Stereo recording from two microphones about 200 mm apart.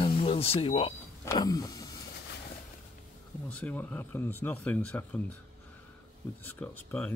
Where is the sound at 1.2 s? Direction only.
15° left (ahead or behind).